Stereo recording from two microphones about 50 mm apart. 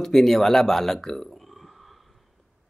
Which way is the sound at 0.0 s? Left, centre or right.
Centre.